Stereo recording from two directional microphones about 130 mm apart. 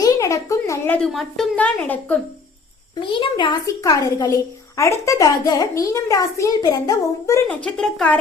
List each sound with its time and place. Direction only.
0.0 s a sound: 25° left (ahead or behind)
0.9 s a woman's voice: 5° left (ahead or behind)
2.9 s a child's voice: 35° left (ahead or behind)
7.4 s a woman's voice: 5° left (ahead or behind)